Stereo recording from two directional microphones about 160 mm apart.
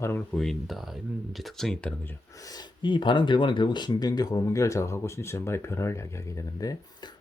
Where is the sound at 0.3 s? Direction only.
Centre (ahead or behind).